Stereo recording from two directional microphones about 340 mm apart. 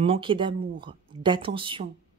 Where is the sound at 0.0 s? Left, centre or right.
Centre.